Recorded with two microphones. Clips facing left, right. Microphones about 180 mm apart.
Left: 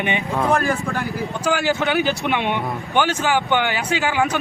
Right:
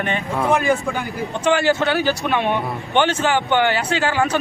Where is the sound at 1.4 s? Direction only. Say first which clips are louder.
Right 3 dB; 10° left (ahead or behind).